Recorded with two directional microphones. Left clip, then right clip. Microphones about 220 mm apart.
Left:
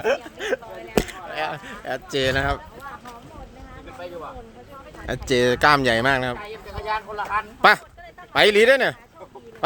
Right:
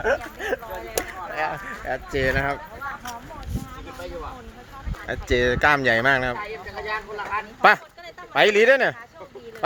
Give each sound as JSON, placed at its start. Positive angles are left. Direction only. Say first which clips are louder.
{"t": 0.0, "sound": "speech", "louder": "even", "side_deg": 15}
{"t": 5.0, "sound": "speech", "louder": "left 2 dB", "side_deg": 15}